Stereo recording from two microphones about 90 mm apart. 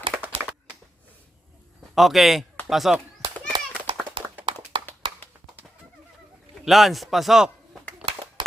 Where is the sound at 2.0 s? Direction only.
Centre (ahead or behind).